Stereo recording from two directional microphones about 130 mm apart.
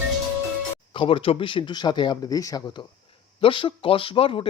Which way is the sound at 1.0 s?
40° left (ahead or behind).